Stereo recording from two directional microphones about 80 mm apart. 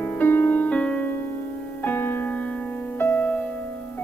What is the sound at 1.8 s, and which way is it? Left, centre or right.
Music, left.